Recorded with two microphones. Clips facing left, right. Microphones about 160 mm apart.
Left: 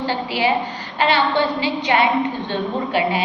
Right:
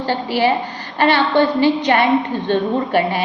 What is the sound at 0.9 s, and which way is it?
Speech, 45° right (ahead or behind).